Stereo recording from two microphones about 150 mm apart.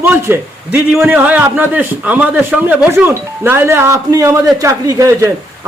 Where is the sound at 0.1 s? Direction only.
15° right (ahead or behind).